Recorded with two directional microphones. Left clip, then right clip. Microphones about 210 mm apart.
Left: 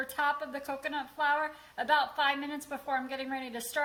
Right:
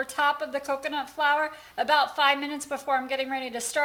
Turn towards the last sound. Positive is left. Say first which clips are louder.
# right 6 dB
turn(degrees=-40)  # may be behind; listen again after turning